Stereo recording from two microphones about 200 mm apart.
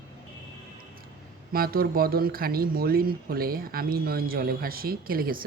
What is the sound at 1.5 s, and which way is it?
Speech, 50° right (ahead or behind).